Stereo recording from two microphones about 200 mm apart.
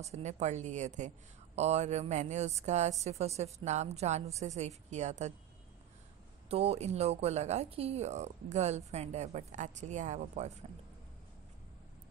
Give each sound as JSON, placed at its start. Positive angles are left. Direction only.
{"t": 0.0, "sound": "speech", "side_deg": -35}
{"t": 6.5, "sound": "speech", "side_deg": -30}